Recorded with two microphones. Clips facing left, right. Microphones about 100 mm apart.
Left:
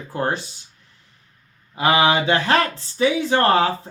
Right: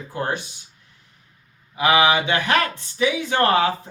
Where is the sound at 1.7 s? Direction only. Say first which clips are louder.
Even; 35° left (ahead or behind).